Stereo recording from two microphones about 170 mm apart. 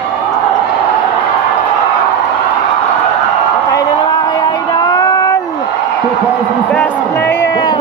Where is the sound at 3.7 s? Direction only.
20° left (ahead or behind).